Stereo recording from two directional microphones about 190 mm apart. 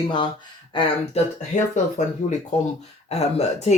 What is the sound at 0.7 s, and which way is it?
Speech, 25° left (ahead or behind).